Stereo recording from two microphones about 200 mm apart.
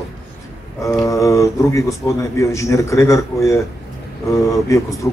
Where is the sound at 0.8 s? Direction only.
15° left (ahead or behind).